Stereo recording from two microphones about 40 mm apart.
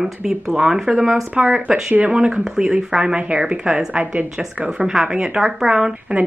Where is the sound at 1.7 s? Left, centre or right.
Right.